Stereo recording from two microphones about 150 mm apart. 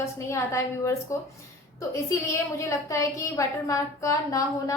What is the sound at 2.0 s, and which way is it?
A woman's voice, 20° left (ahead or behind).